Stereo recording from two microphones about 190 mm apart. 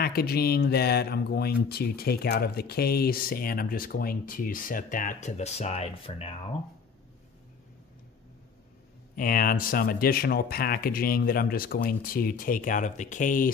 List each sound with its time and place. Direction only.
0.0 s speech: 55° left (ahead or behind); by 6.3 s 30° left (ahead or behind)
9.1 s speech: 45° left (ahead or behind)